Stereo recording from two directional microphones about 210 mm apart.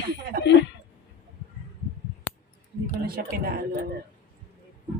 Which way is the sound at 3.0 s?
45° right (ahead or behind).